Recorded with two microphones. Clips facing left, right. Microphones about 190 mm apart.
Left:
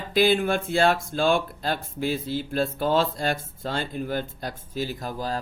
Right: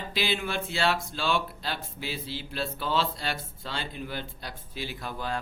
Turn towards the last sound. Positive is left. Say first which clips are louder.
# left 4 dB
turn(degrees=40)  # may be behind; listen again after turning